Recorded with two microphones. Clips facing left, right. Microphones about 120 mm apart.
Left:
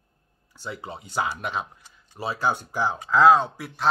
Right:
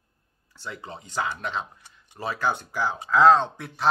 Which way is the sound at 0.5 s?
15° left (ahead or behind).